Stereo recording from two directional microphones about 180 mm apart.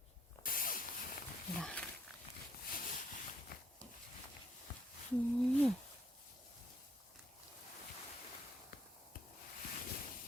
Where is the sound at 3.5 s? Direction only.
55° left (ahead or behind).